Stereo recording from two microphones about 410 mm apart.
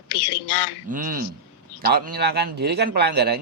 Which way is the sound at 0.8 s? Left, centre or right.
Centre.